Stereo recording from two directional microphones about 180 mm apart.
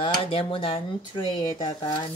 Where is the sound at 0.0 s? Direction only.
30° left (ahead or behind).